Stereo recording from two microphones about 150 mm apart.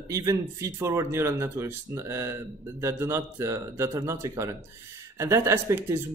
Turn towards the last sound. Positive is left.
turn(degrees=-15)  # may be behind; listen again after turning